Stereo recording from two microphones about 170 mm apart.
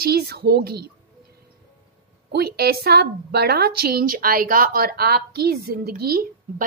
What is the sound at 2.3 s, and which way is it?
A woman's voice, 70° right (ahead or behind).